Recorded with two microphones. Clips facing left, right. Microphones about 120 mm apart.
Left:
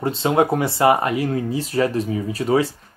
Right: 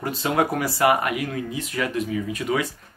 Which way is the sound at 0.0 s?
25° left (ahead or behind).